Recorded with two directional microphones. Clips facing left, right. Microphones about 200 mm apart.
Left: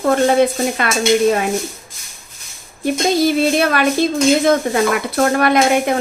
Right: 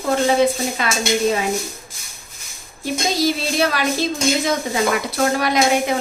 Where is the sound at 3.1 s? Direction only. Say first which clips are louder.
Left 6 dB; 55° left (ahead or behind).